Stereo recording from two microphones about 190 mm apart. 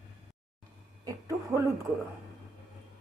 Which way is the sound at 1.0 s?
15° right (ahead or behind).